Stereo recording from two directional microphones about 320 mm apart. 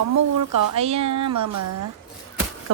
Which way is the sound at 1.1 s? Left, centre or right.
Right.